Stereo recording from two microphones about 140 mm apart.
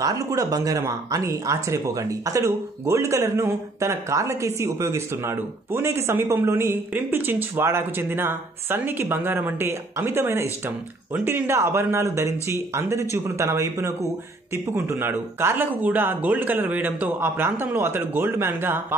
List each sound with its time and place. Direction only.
0.0 s speech: 25° right (ahead or behind)